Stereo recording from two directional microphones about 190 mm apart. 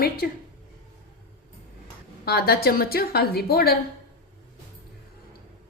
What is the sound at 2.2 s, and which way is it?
A woman's voice, 55° left (ahead or behind).